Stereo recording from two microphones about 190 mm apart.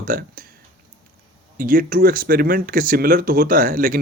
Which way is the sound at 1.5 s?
50° right (ahead or behind).